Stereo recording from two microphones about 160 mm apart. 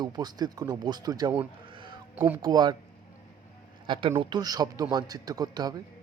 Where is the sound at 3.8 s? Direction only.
30° right (ahead or behind).